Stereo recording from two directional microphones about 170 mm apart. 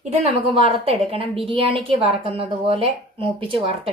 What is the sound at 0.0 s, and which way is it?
Speech, 40° right (ahead or behind).